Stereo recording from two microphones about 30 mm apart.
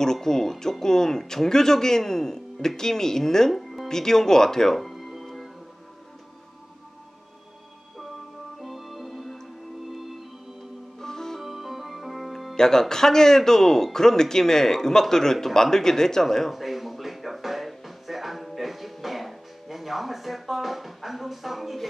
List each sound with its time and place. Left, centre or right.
0.0 s speech: centre
3.5 s music: centre
3.9 s speech: centre
4.7 s music: centre
8.5 s music: centre
11.0 s music: centre
11.4 s music: centre
12.5 s speech: centre
16.5 s music: centre